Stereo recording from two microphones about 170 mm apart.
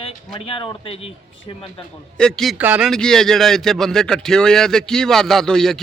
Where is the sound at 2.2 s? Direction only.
5° left (ahead or behind).